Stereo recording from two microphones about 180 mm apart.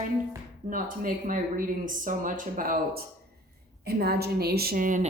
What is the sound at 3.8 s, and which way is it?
A woman's voice, 60° right (ahead or behind).